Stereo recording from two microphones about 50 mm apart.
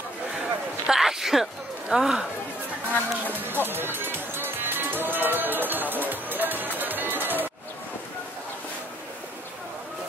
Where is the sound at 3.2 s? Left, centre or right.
Right.